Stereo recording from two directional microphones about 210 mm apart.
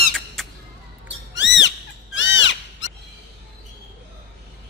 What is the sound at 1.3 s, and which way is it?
Squawk, 55° left (ahead or behind).